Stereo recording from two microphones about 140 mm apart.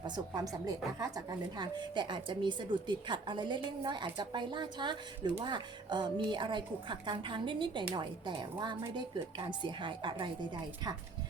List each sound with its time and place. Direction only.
0.3 s a woman's voice: 25° right (ahead or behind)